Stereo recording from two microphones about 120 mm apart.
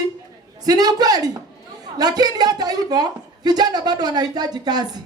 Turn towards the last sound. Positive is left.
turn(degrees=-35)  # may be behind; listen again after turning